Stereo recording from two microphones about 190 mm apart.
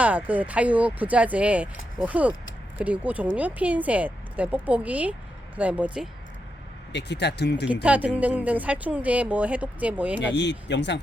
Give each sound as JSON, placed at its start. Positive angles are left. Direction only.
{"t": 0.0, "sound": "speech", "side_deg": -10}
{"t": 6.9, "sound": "speech", "side_deg": 65}
{"t": 7.7, "sound": "speech", "side_deg": -5}
{"t": 10.3, "sound": "speech", "side_deg": 65}